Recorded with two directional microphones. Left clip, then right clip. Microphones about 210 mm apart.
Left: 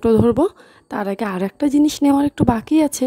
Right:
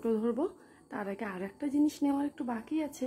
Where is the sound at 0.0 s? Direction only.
50° left (ahead or behind).